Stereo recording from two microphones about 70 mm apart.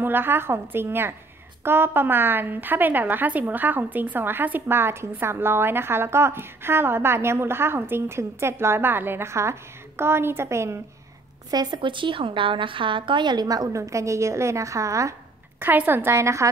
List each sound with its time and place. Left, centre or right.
0.0 s a woman's voice: right
11.5 s a woman's voice: right
13.2 s a woman's voice: right
15.6 s a woman's voice: right